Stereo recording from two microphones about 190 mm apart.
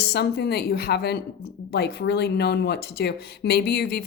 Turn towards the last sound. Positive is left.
turn(degrees=55)  # may be behind; listen again after turning